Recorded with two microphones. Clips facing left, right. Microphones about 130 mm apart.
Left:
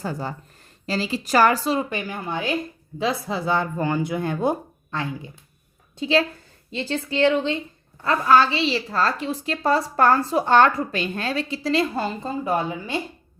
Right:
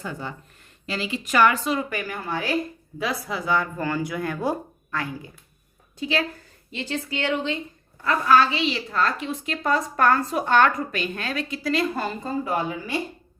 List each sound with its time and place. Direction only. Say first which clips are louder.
0.0 s a woman's voice: left 4 dB; 35° left (ahead or behind)